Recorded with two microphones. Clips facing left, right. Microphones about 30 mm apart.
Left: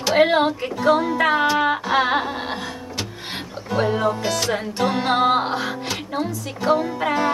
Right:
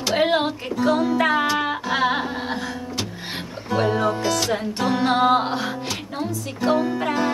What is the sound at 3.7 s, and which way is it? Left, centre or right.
Music, centre.